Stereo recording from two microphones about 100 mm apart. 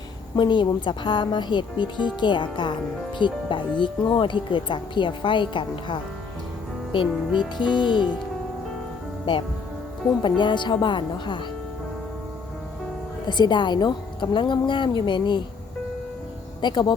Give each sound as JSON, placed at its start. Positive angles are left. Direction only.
{"t": 0.3, "sound": "a woman's voice", "side_deg": 50}
{"t": 10.2, "sound": "a woman's voice", "side_deg": 50}
{"t": 13.2, "sound": "a woman's voice", "side_deg": 50}
{"t": 16.6, "sound": "a woman's voice", "side_deg": 50}